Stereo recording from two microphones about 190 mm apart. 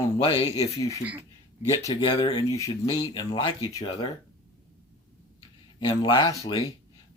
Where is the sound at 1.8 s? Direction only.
20° left (ahead or behind).